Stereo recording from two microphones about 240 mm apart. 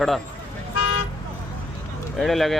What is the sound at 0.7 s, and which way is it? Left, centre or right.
Toot, left.